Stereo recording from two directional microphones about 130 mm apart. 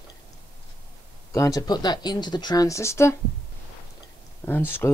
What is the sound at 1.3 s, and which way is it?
Speech, 25° left (ahead or behind).